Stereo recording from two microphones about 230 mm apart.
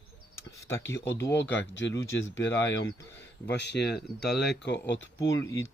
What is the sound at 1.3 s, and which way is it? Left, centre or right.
Speech, left.